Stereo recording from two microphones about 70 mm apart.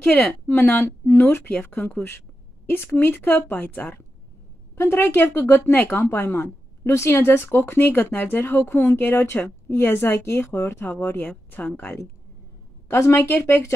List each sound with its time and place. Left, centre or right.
0.0 s a woman's voice: left
11.1 s a woman's voice: left
12.9 s speech: left